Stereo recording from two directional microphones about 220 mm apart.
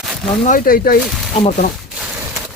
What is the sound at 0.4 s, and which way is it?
Speech, 40° left (ahead or behind).